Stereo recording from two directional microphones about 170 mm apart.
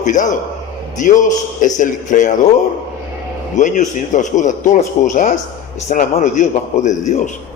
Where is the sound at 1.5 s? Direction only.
45° left (ahead or behind).